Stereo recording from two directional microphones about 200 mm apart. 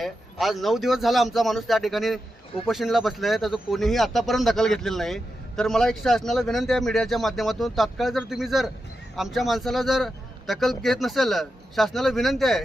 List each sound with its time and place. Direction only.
0.0 s a man's voice: centre (ahead or behind)